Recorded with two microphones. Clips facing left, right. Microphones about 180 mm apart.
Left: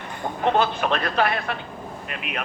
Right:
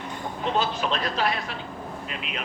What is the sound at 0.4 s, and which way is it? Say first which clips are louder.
Speech: left 5 dB; 60° left (ahead or behind).